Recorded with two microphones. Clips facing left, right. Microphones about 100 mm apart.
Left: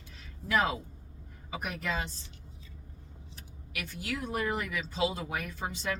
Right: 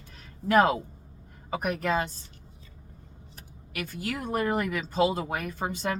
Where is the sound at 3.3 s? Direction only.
50° right (ahead or behind).